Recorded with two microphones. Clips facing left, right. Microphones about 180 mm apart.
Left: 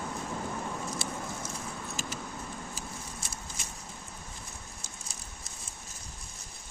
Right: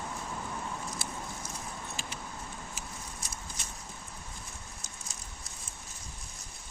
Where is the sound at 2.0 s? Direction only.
40° left (ahead or behind).